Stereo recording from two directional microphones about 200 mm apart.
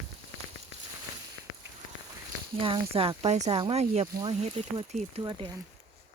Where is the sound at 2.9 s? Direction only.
30° right (ahead or behind).